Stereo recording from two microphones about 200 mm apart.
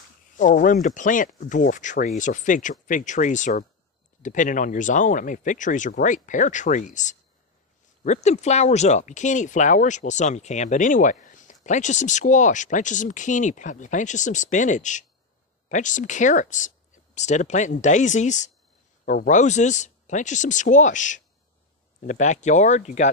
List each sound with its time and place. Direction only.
0.4 s speech: 40° left (ahead or behind)